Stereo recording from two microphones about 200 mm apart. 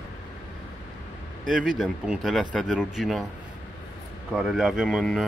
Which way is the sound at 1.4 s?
Centre (ahead or behind).